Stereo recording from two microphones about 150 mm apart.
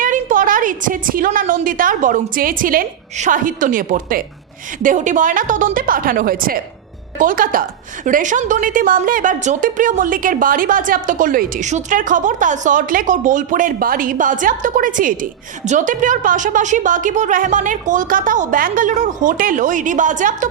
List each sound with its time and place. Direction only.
0.0 s a woman's voice: 60° right (ahead or behind)
8.0 s speech: 55° right (ahead or behind)